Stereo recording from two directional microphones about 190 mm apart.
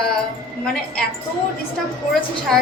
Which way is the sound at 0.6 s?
5° left (ahead or behind).